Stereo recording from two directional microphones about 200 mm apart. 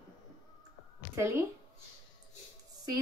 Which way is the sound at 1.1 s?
15° right (ahead or behind).